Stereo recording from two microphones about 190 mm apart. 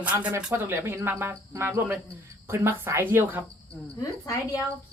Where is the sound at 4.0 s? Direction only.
20° left (ahead or behind).